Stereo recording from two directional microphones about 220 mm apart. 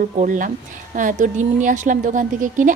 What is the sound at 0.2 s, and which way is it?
A woman's voice, 35° right (ahead or behind).